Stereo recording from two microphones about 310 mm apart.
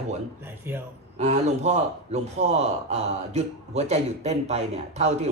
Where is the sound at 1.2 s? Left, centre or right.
Right.